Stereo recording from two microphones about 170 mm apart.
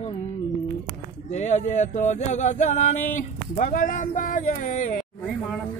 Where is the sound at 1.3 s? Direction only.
45° left (ahead or behind).